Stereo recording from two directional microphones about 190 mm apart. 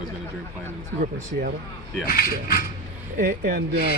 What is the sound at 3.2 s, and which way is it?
Speech, 50° right (ahead or behind).